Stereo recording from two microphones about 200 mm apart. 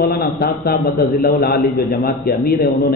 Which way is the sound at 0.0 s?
50° left (ahead or behind).